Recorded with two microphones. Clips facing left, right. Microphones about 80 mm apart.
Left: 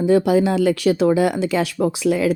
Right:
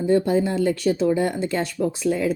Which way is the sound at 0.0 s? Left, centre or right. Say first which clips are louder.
Left 4 dB; left.